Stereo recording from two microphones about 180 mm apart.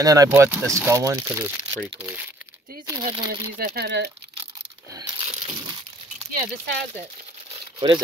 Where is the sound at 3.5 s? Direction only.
60° right (ahead or behind).